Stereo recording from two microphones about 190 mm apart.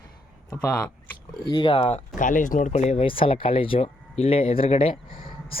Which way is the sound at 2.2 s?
45° left (ahead or behind).